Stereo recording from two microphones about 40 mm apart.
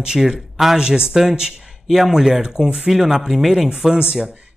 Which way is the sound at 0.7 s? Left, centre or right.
Right.